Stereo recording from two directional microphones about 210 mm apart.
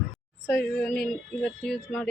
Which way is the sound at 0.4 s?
5° left (ahead or behind).